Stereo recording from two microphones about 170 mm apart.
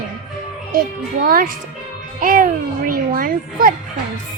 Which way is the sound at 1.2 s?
55° right (ahead or behind).